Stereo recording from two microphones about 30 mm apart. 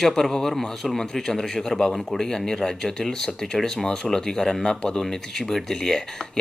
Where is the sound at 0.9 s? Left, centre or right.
Centre.